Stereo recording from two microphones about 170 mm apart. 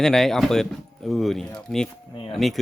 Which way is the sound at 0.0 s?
5° left (ahead or behind).